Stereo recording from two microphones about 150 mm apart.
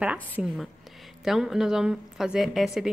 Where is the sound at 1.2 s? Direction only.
Centre (ahead or behind).